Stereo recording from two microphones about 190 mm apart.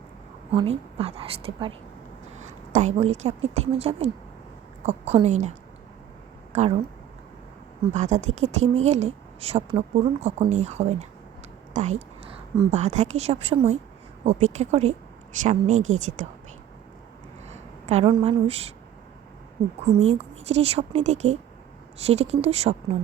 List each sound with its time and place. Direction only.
0.5 s a woman's voice: 30° right (ahead or behind)
7.9 s a woman's voice: 40° right (ahead or behind)
11.7 s a sound: 40° right (ahead or behind)
12.7 s a woman's voice: 40° right (ahead or behind)
17.5 s a woman's voice: 35° right (ahead or behind)